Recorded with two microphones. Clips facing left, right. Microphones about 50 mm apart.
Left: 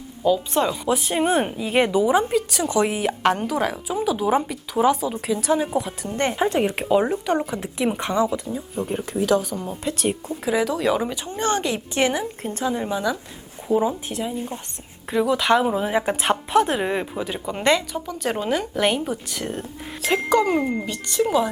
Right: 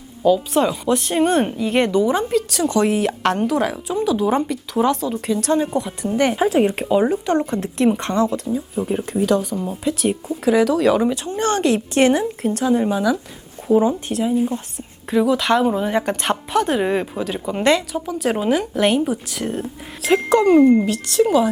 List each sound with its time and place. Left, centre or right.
0.3 s a woman's voice: centre